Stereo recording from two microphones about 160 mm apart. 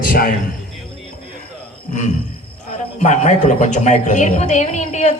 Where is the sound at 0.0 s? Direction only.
60° left (ahead or behind).